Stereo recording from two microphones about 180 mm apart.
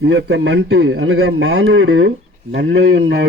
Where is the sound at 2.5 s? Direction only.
70° right (ahead or behind).